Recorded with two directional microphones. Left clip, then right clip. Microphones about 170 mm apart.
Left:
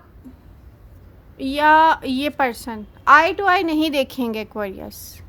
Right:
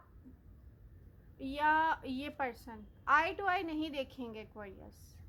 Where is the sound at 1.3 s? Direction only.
40° left (ahead or behind).